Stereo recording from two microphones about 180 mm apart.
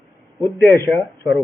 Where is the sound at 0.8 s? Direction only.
10° left (ahead or behind).